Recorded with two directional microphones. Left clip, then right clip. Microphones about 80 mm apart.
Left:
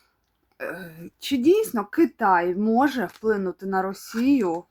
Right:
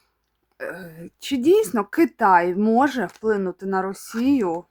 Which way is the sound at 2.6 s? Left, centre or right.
Right.